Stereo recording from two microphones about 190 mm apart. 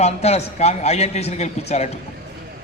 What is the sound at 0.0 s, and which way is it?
A man's voice, 35° left (ahead or behind).